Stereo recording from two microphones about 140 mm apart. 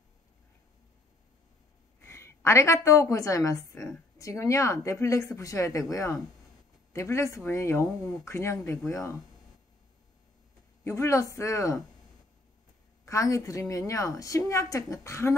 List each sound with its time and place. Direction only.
2.0 s a woman's voice: 20° left (ahead or behind)
10.8 s a woman's voice: 20° left (ahead or behind)
13.0 s a woman's voice: 20° left (ahead or behind)